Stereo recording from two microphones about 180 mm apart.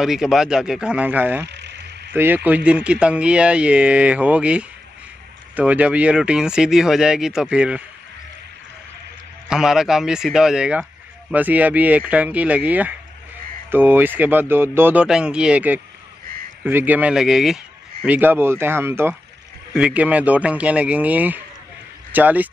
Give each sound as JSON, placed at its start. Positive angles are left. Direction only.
{"t": 0.0, "sound": "speech", "side_deg": 0}
{"t": 1.5, "sound": "a sound", "side_deg": -70}
{"t": 2.1, "sound": "speech", "side_deg": -10}
{"t": 9.5, "sound": "speech", "side_deg": 0}